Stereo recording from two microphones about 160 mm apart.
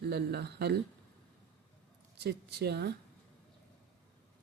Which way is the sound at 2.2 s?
90° right.